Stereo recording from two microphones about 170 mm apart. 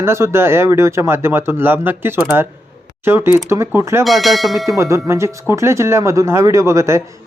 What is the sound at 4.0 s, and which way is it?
Speech, centre (ahead or behind).